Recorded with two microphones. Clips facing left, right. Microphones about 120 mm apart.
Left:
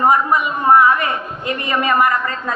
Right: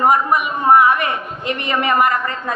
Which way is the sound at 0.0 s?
15° right (ahead or behind).